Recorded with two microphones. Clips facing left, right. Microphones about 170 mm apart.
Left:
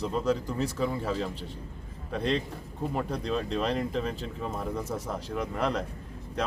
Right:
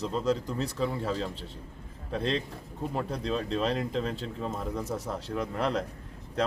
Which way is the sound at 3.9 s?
35° right (ahead or behind).